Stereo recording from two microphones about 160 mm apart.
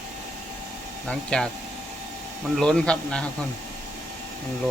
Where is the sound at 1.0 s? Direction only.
5° left (ahead or behind).